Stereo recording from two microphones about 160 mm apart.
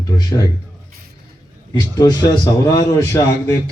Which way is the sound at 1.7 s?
25° left (ahead or behind).